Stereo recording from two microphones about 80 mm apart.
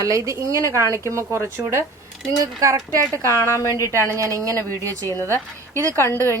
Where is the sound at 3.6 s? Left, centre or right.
Left.